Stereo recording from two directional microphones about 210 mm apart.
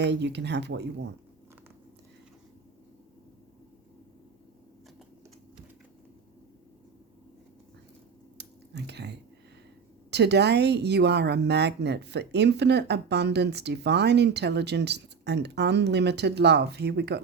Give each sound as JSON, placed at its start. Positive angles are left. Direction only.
{"t": 0.0, "sound": "speech", "side_deg": -55}
{"t": 8.4, "sound": "a sound", "side_deg": -55}
{"t": 10.1, "sound": "a woman's voice", "side_deg": -55}